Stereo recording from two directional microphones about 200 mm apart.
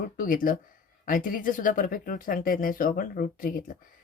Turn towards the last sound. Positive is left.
turn(degrees=40)  # may be behind; listen again after turning